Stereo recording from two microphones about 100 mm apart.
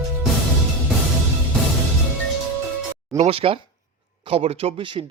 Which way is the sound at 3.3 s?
70° right (ahead or behind).